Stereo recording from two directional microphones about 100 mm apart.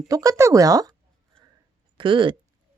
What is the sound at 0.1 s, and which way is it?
Speech, 35° right (ahead or behind).